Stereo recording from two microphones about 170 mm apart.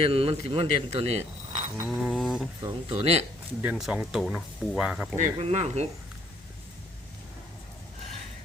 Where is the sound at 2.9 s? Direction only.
35° right (ahead or behind).